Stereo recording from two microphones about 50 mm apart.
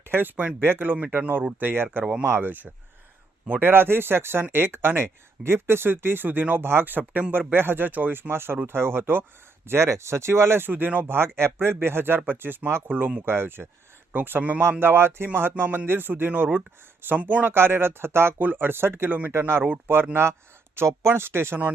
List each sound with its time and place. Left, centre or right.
0.0 s speech: right
2.5 s speech: right
3.6 s speech: right
9.6 s speech: right
10.7 s speech: right
12.9 s speech: right
13.2 s speech: right
14.6 s speech: right
17.2 s speech: right
17.4 s speech: right
18.3 s speech: right
19.3 s speech: right
19.9 s speech: right
20.7 s speech: right